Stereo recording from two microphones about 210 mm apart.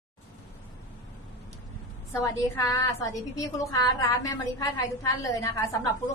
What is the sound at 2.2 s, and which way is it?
A woman's voice, 15° left (ahead or behind).